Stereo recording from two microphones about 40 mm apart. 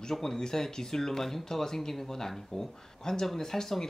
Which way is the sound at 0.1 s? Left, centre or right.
Centre.